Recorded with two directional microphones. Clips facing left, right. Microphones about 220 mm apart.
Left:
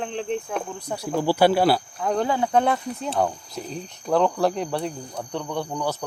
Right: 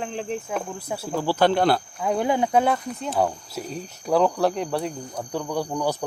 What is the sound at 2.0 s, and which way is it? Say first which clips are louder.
Speech: right 1 dB; 10° right (ahead or behind).